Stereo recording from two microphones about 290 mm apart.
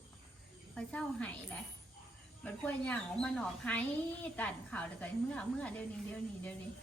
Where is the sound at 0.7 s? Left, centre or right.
Centre.